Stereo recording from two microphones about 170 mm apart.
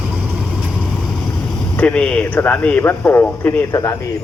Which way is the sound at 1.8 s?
5° left (ahead or behind).